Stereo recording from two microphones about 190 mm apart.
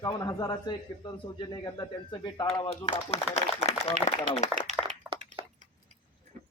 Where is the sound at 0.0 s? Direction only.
20° left (ahead or behind).